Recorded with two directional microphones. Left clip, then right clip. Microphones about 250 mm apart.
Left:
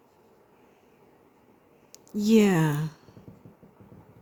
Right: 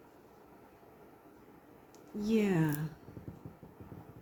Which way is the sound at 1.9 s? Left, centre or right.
Left.